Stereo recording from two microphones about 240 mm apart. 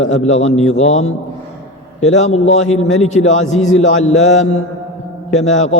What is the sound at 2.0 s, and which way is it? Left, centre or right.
Speech, left.